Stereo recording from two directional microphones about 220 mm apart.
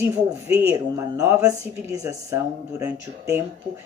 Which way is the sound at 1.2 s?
15° right (ahead or behind).